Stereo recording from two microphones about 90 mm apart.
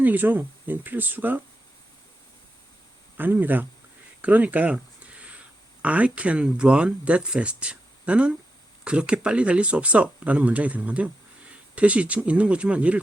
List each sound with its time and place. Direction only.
0.0 s speech: 20° right (ahead or behind)
3.2 s speech: 20° right (ahead or behind)
4.2 s a sound: 15° right (ahead or behind)
5.8 s speech: 15° right (ahead or behind)